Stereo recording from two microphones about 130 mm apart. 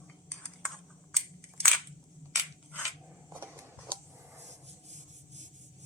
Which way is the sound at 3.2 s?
20° right (ahead or behind).